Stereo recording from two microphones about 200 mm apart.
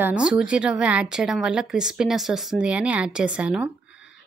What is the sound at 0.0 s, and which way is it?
Speech, 5° right (ahead or behind).